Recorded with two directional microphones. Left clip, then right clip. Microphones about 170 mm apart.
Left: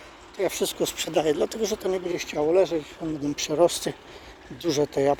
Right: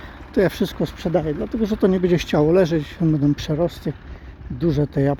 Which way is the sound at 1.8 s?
15° right (ahead or behind).